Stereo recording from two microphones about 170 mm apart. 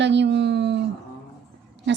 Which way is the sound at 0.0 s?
90° right.